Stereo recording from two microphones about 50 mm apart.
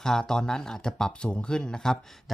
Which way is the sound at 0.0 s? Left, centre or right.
Centre.